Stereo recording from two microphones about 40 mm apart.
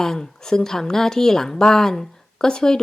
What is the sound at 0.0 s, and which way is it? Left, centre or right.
A woman's voice, centre.